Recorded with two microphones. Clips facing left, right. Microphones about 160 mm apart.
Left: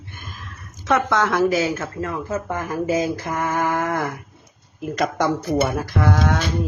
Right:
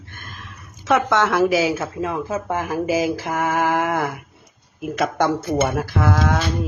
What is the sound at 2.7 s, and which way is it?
Mantra, 85° right.